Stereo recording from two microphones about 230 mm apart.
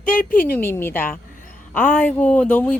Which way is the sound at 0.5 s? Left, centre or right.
Centre.